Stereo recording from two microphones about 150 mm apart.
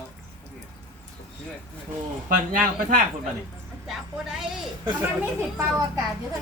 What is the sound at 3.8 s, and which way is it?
Speech, centre (ahead or behind).